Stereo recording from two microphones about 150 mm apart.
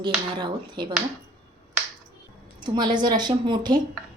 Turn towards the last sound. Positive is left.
turn(degrees=-30)  # may be behind; listen again after turning